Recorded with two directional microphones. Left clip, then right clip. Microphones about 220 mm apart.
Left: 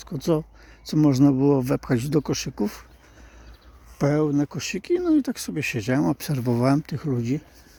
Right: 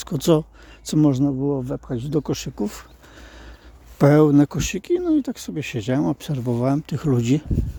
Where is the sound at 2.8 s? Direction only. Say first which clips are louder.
Right 6 dB; 25° right (ahead or behind).